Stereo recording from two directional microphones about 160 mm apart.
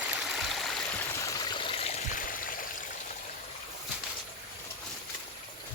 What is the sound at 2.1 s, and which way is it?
Stream, 60° left (ahead or behind).